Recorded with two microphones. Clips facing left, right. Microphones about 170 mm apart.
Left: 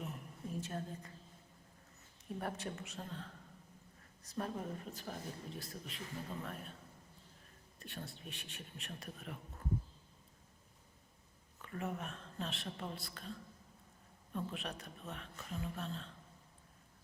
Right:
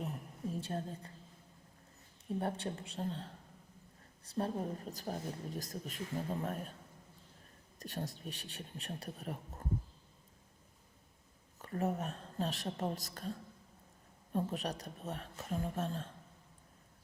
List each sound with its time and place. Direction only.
0.0 s a sound: 30° right (ahead or behind)
2.4 s a man's voice: 30° right (ahead or behind)
7.8 s a man's voice: 40° right (ahead or behind)
11.6 s a man's voice: 40° right (ahead or behind)
14.3 s a man's voice: 40° right (ahead or behind)